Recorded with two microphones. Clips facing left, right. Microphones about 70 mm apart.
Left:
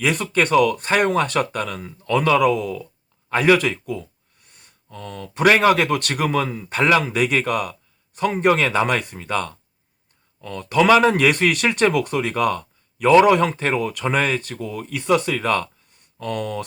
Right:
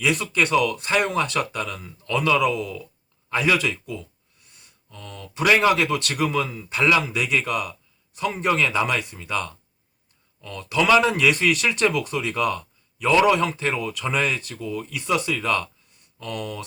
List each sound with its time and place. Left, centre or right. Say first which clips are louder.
0.0 s speech: left 2 dB; left